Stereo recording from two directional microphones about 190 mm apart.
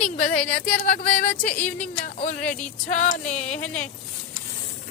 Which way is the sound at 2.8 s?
40° left (ahead or behind).